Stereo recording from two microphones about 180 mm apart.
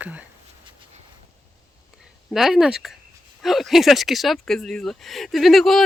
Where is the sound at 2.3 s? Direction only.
Centre (ahead or behind).